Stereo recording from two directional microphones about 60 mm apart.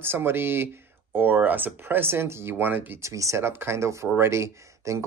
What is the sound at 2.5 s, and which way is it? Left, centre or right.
Speech, right.